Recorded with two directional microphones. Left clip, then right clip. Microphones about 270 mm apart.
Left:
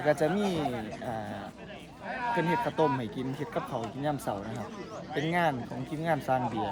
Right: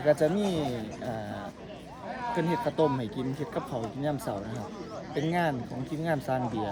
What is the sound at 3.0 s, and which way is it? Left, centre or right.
Speech, centre.